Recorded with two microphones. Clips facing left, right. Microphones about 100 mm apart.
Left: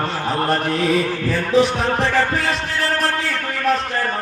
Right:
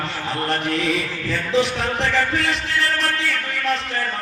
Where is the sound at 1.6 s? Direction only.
35° left (ahead or behind).